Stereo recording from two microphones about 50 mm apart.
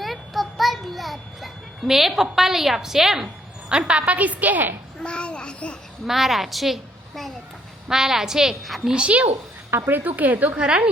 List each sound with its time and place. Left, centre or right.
0.0 s a sound: centre
2.3 s a woman's voice: centre
3.7 s a woman's voice: right
5.0 s a sound: left
6.1 s a woman's voice: centre
7.9 s a woman's voice: centre
8.9 s a woman's voice: right
9.6 s speech: right
9.9 s speech: right
10.6 s a woman's voice: right